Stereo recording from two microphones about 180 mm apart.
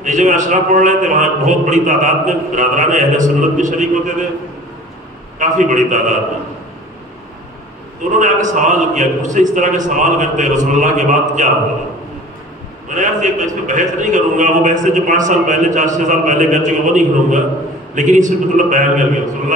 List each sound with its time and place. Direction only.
0.0 s a man's voice: 45° right (ahead or behind)
5.4 s a man's voice: 45° right (ahead or behind)
8.1 s a man's voice: 45° right (ahead or behind)
12.8 s a man's voice: 45° right (ahead or behind)